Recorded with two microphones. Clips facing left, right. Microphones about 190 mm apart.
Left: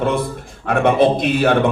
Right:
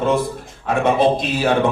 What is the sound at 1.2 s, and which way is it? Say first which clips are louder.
Speech: left 4 dB; 60° left (ahead or behind).